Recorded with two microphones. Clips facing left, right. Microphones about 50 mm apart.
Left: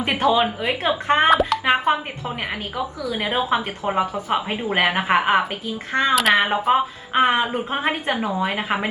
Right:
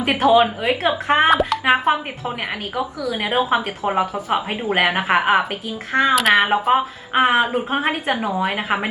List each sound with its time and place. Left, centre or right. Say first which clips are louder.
0.7 s speech: right 2 dB; right
1.0 s speech: even; centre
3.1 s speech: right 2 dB; centre